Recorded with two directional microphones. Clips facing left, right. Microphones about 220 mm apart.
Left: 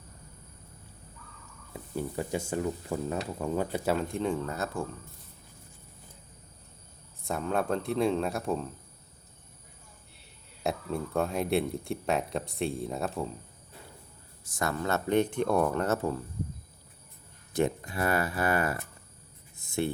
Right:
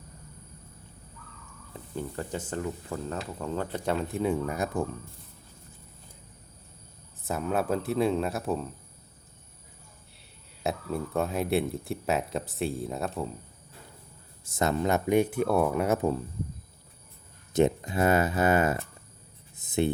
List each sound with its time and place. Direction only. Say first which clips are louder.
1.7 s speech: left 2 dB; 10° left (ahead or behind); by 4.9 s 15° right (ahead or behind)
7.3 s speech: right 1 dB; 5° right (ahead or behind)
10.6 s speech: right 1 dB; centre (ahead or behind)
14.4 s speech: right 5 dB; 25° right (ahead or behind)
17.5 s speech: right 5 dB; 20° right (ahead or behind)
19.5 s a sound: right 4 dB; 20° right (ahead or behind)